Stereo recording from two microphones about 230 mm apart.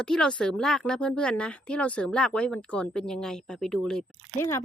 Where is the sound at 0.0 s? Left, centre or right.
Centre.